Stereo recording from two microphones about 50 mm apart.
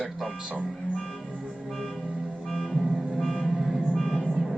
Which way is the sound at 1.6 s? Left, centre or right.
Centre.